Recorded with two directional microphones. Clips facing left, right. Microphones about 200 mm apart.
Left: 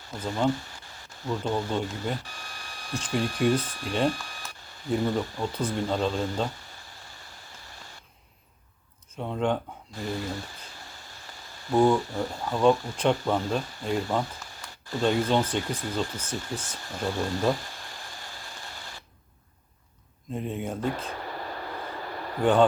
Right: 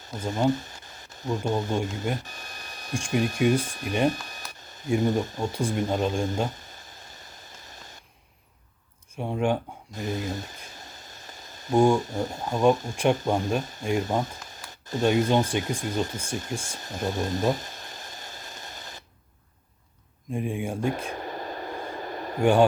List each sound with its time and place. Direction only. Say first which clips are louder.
0.0 s speech: right 2 dB; 20° right (ahead or behind)
9.1 s speech: right 2 dB; 10° right (ahead or behind)
20.3 s speech: right 2 dB; 10° right (ahead or behind)
21.0 s a sound: right 2 dB; 15° right (ahead or behind)